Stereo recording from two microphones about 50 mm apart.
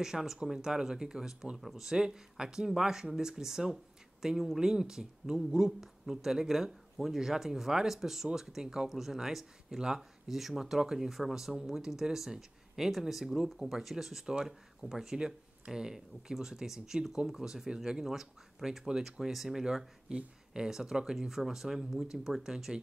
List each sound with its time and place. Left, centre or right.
0.0 s speech: centre